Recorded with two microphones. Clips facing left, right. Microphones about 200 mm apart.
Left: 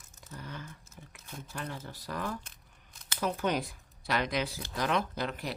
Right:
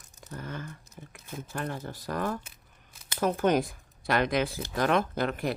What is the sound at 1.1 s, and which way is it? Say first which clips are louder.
Speech: right 6 dB; 55° right (ahead or behind).